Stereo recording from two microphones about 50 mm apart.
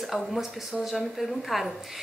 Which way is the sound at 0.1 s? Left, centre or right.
Centre.